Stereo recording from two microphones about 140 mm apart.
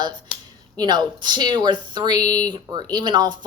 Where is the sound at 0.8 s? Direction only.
30° right (ahead or behind).